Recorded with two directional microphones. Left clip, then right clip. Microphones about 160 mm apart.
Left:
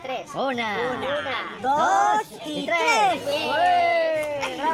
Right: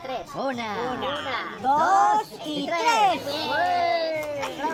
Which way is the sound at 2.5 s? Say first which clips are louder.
Left 1 dB; 40° left (ahead or behind).